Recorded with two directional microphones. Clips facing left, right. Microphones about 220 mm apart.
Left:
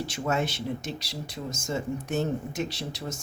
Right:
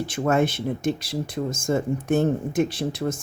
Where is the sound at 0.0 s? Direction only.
55° right (ahead or behind).